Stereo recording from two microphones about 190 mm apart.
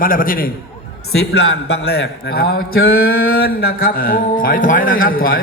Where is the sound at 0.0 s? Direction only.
50° left (ahead or behind).